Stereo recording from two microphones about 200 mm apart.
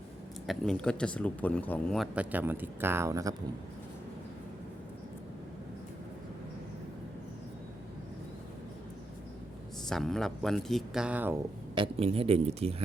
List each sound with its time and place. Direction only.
0.4 s speech: centre (ahead or behind); by 3.3 s 15° right (ahead or behind)
9.9 s speech: centre (ahead or behind)
11.7 s speech: 25° right (ahead or behind)